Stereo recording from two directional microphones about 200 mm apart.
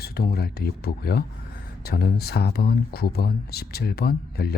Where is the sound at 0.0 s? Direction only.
50° left (ahead or behind).